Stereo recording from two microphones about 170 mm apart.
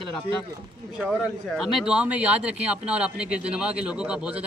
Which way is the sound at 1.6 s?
5° right (ahead or behind).